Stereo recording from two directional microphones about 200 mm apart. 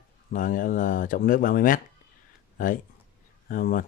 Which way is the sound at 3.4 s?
45° left (ahead or behind).